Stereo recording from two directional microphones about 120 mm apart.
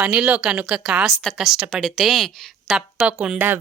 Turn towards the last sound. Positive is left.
turn(degrees=-20)  # may be behind; listen again after turning